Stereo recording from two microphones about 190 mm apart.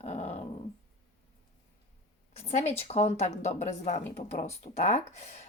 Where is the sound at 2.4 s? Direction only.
35° left (ahead or behind).